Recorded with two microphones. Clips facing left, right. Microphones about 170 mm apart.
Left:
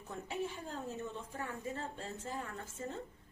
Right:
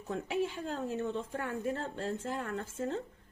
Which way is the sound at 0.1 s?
90° right.